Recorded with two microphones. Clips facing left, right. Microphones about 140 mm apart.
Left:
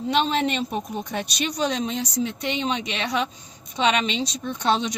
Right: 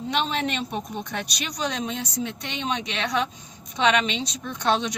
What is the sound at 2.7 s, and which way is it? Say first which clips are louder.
A woman's voice: left 1 dB; 10° left (ahead or behind).